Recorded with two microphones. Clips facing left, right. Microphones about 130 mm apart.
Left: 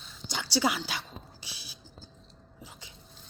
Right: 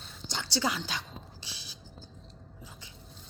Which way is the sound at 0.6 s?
15° left (ahead or behind).